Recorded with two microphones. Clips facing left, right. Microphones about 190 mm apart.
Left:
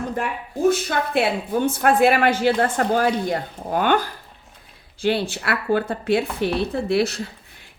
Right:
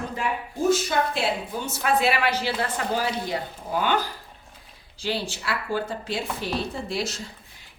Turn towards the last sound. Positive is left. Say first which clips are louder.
# left 9 dB
turn(degrees=60)  # may be behind; listen again after turning